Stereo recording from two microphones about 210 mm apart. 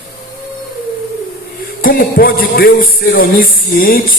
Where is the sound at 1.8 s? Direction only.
40° left (ahead or behind).